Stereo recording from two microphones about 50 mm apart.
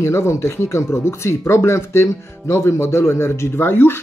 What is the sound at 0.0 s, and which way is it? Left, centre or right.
Speech, left.